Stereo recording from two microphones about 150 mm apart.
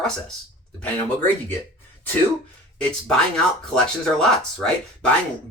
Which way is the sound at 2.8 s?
5° left (ahead or behind).